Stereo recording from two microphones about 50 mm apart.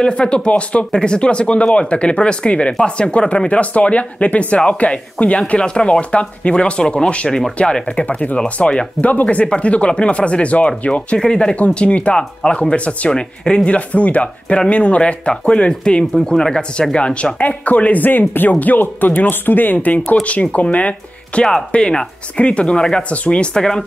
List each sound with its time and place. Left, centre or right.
0.0 s speech: left
21.5 s speech: centre